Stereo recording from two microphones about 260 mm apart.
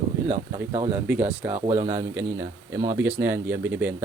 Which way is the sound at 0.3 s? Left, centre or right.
Centre.